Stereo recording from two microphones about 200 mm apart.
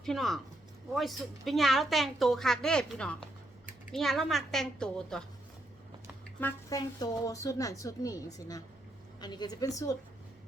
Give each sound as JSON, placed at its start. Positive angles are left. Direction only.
{"t": 0.0, "sound": "a woman's voice", "side_deg": 0}
{"t": 6.4, "sound": "a woman's voice", "side_deg": 15}